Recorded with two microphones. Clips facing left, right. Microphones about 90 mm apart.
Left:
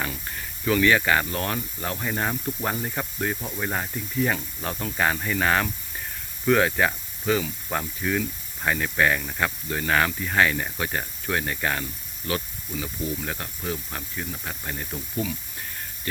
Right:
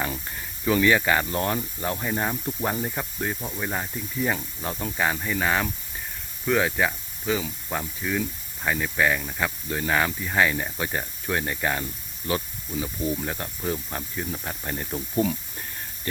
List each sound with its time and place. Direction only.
0.7 s speech: 20° right (ahead or behind)